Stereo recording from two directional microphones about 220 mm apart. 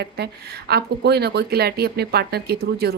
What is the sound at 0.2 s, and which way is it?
A woman's voice, 50° right (ahead or behind).